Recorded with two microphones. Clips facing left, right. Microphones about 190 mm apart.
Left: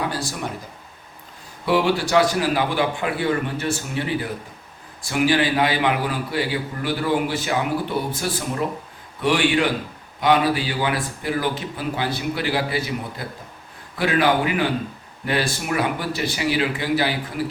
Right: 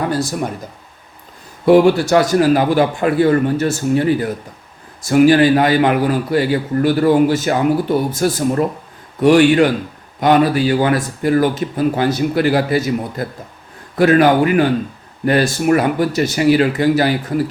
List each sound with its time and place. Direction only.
1.6 s a man's voice: 45° right (ahead or behind)